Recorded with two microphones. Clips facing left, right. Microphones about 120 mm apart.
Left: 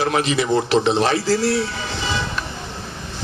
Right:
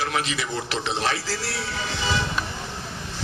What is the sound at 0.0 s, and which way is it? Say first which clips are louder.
Speech: left 7 dB; 25° left (ahead or behind).